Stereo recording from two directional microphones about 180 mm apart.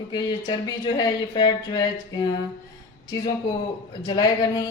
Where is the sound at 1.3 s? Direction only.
25° left (ahead or behind).